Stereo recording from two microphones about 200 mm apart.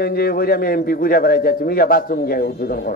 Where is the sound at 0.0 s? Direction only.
50° left (ahead or behind).